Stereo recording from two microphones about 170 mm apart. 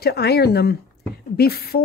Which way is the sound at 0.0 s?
70° left (ahead or behind).